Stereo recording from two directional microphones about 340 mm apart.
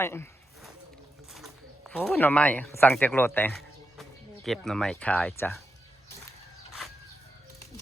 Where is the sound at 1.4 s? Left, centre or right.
Centre.